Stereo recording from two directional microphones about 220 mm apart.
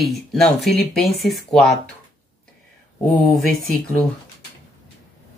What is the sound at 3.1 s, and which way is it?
Speech, 5° left (ahead or behind).